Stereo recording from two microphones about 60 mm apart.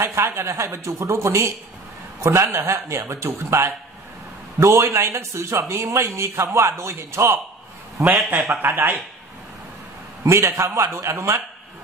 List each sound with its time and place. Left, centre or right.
0.0 s speech: right
2.5 s speech: right
8.0 s speech: right
10.2 s speech: right